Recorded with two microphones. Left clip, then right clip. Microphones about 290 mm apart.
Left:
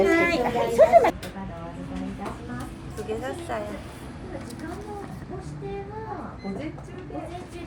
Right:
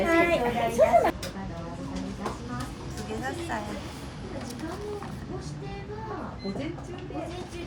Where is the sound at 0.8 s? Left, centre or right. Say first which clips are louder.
Left 5 dB; left.